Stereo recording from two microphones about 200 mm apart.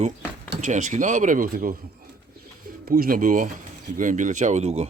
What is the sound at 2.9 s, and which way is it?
Speech, 45° right (ahead or behind).